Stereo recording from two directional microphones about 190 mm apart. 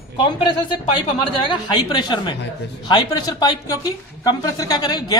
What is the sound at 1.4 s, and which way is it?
A woman's voice, 25° left (ahead or behind).